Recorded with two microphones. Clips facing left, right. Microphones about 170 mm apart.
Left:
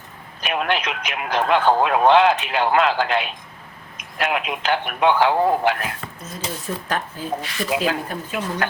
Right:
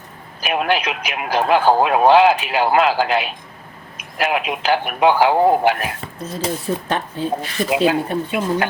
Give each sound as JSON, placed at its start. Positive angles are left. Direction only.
{"t": 0.6, "sound": "speech", "side_deg": -5}
{"t": 5.4, "sound": "a man's voice", "side_deg": -25}
{"t": 7.4, "sound": "speech", "side_deg": -40}
{"t": 7.7, "sound": "a man's voice", "side_deg": -25}